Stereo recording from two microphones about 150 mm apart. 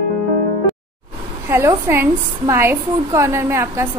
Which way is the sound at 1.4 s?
15° right (ahead or behind).